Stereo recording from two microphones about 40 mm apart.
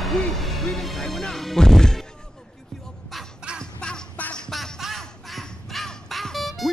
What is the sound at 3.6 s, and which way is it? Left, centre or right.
Crow, centre.